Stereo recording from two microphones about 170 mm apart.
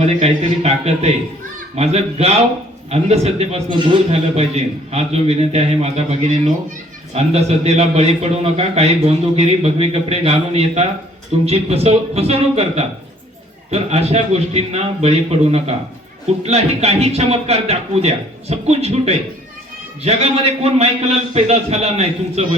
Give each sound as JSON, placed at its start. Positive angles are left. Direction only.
{"t": 0.0, "sound": "a man's voice", "side_deg": -40}